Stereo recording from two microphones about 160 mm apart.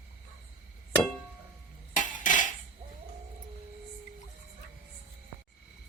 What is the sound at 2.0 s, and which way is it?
Cutlery, 55° left (ahead or behind).